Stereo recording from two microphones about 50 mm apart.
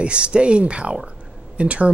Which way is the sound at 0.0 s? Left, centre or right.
Right.